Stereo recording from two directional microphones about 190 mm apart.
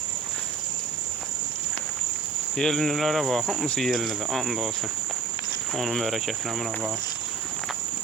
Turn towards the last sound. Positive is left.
turn(degrees=0)  # may be behind; listen again after turning